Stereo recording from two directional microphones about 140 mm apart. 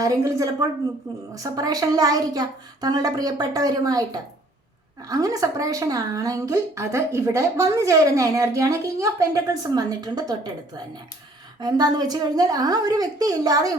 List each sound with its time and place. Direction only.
0.0 s a woman's voice: 25° right (ahead or behind)
11.6 s a woman's voice: 30° right (ahead or behind)